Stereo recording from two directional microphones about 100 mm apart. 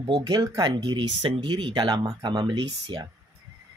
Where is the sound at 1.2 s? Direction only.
60° right (ahead or behind).